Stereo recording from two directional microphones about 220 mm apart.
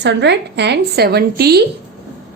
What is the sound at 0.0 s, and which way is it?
A woman's voice, 50° right (ahead or behind).